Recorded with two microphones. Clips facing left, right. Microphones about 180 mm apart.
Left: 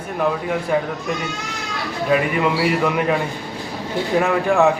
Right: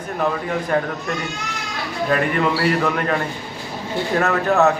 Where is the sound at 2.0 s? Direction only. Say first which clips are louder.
Left 1 dB; 5° left (ahead or behind).